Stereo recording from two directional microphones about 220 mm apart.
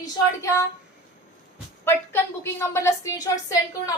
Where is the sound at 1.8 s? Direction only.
10° left (ahead or behind).